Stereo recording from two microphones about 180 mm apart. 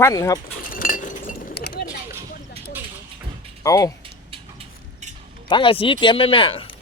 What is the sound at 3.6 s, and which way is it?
Speech, 20° left (ahead or behind).